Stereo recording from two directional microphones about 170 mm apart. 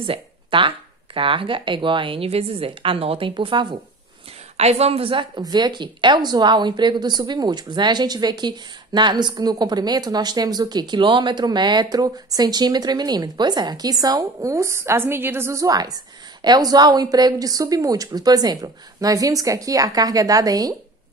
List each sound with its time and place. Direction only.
0.0 s speech: 30° right (ahead or behind)